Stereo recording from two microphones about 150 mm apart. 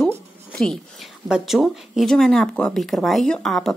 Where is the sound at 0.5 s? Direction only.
5° left (ahead or behind).